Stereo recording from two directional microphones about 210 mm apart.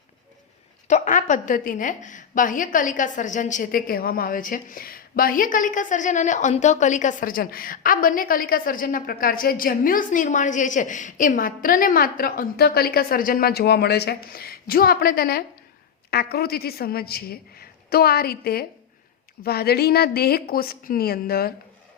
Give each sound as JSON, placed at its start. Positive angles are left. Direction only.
{"t": 0.9, "sound": "a woman's voice", "side_deg": 35}